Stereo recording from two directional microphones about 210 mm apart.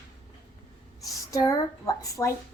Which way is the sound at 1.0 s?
15° left (ahead or behind).